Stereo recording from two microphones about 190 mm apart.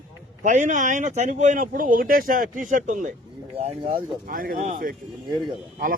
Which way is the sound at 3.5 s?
30° right (ahead or behind).